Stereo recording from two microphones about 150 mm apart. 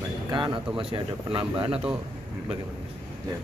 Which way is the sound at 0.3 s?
30° right (ahead or behind).